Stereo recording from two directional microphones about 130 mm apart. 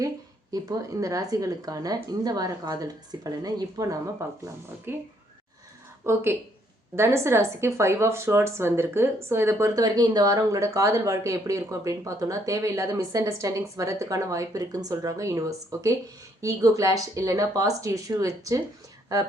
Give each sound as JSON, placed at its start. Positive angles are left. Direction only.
{"t": 0.5, "sound": "a woman's voice", "side_deg": -30}
{"t": 6.0, "sound": "a woman's voice", "side_deg": -20}